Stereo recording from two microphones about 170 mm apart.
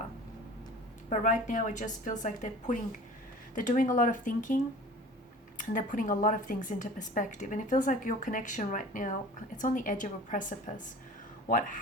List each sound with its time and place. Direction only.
1.1 s speech: 45° left (ahead or behind)